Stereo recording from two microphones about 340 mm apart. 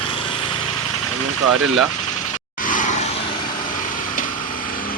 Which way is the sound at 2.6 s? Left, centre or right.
Left.